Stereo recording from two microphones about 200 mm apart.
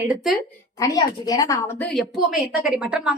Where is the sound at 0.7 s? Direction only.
20° left (ahead or behind).